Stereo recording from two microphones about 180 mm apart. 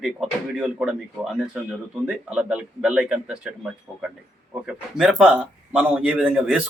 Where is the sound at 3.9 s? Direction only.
15° right (ahead or behind).